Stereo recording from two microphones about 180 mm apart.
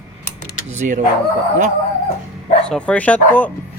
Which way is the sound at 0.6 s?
40° right (ahead or behind).